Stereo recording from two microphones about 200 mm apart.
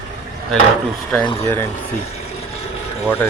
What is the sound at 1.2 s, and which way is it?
Speech, 30° left (ahead or behind).